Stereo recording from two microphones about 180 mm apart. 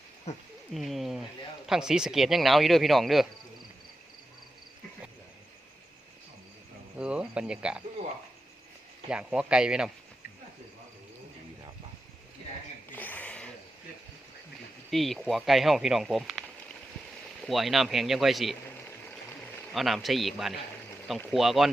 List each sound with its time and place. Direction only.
0.3 s speech: 40° left (ahead or behind)
0.7 s speech: centre (ahead or behind)
7.0 s speech: 5° right (ahead or behind)
9.0 s speech: 5° right (ahead or behind)
12.9 s a sound: 10° left (ahead or behind)
14.8 s speech: centre (ahead or behind)
17.4 s speech: centre (ahead or behind)
19.7 s speech: centre (ahead or behind)